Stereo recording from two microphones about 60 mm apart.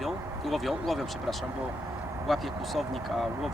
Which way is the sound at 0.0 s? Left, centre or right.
Centre.